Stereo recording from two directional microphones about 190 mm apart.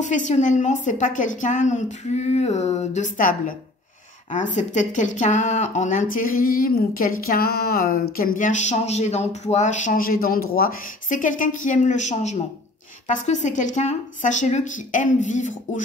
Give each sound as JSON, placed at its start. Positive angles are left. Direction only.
{"t": 0.0, "sound": "a woman's voice", "side_deg": 40}
{"t": 4.6, "sound": "a woman's voice", "side_deg": 40}